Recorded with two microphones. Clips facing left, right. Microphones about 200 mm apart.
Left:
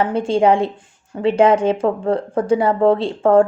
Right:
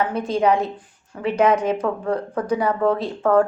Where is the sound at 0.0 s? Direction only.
30° left (ahead or behind).